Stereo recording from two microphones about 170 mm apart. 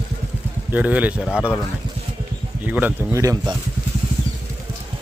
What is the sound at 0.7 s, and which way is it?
Speech, 10° right (ahead or behind).